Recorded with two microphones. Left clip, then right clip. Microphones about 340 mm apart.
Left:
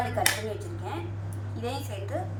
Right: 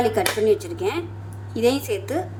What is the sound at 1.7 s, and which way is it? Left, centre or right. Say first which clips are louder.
Speech: right 10 dB; right.